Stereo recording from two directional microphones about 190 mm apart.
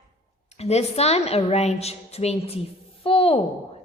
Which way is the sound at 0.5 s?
35° left (ahead or behind).